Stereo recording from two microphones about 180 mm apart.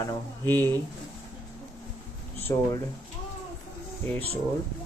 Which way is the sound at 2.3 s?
15° left (ahead or behind).